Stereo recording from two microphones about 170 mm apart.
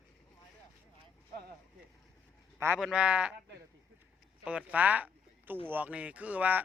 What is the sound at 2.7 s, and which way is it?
Speech, 5° right (ahead or behind).